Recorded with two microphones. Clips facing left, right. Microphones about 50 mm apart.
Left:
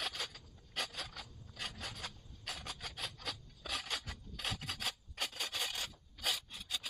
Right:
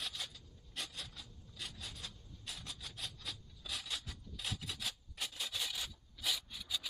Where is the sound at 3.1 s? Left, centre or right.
Left.